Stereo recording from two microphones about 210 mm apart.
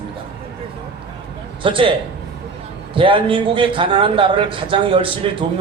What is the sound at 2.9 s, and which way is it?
A man's voice, 25° right (ahead or behind).